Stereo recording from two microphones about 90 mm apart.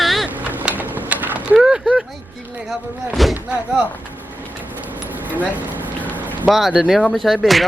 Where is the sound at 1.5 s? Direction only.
5° right (ahead or behind).